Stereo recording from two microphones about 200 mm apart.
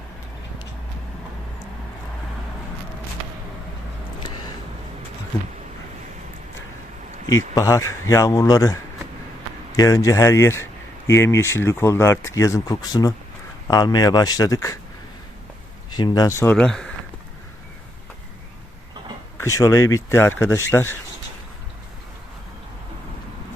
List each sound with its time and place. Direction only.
7.5 s speech: 15° left (ahead or behind)
15.9 s speech: 20° left (ahead or behind); by 16.9 s 5° left (ahead or behind)
19.4 s speech: 15° left (ahead or behind)